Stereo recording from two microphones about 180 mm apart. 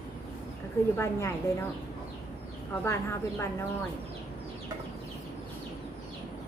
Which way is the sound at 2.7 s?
15° left (ahead or behind).